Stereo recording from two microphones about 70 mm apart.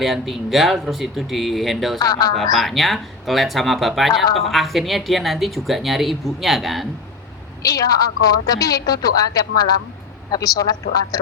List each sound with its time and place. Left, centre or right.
0.0 s a woman's voice: centre
2.0 s a woman's voice: left
2.3 s a woman's voice: centre
7.6 s a woman's voice: left